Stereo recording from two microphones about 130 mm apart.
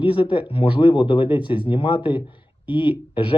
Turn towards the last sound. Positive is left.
turn(degrees=40)  # may be behind; listen again after turning